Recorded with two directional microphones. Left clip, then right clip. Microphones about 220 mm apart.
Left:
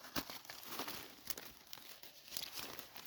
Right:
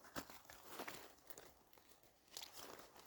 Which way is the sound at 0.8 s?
50° left (ahead or behind).